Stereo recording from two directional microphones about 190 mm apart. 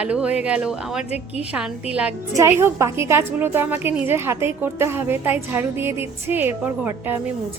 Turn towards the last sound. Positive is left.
turn(degrees=-10)  # may be behind; listen again after turning